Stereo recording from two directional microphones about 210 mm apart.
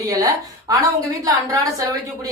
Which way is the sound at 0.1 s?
15° right (ahead or behind).